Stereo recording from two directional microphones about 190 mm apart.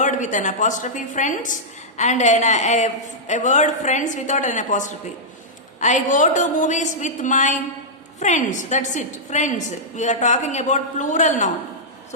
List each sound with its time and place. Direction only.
0.0 s a woman's voice: 40° left (ahead or behind)